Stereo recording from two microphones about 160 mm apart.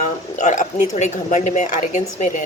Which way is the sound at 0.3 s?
50° left (ahead or behind).